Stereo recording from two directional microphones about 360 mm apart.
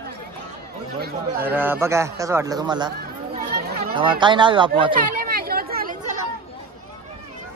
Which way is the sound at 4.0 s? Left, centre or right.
Centre.